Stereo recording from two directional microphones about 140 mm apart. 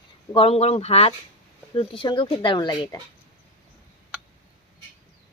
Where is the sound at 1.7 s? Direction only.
35° left (ahead or behind).